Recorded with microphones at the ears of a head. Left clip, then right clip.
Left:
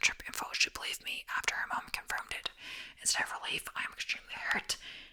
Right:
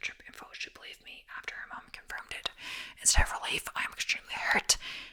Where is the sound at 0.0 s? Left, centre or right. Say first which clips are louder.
Left 8 dB; left.